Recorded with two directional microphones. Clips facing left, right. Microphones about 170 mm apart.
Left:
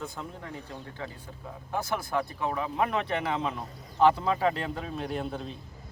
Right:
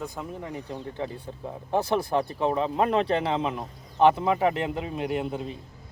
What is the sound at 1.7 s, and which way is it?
Speech, 30° right (ahead or behind).